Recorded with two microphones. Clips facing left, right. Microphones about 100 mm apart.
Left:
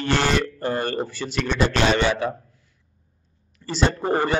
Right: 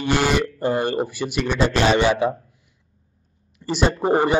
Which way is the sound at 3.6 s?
15° right (ahead or behind).